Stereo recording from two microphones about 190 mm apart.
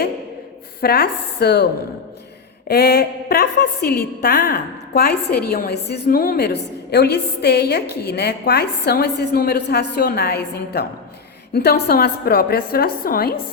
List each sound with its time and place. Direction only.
0.8 s a woman's voice: 55° left (ahead or behind)
2.6 s a woman's voice: 55° left (ahead or behind)